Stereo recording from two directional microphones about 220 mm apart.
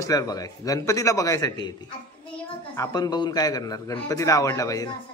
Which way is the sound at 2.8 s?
20° left (ahead or behind).